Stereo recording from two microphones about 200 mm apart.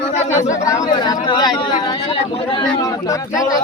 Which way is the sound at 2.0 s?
25° left (ahead or behind).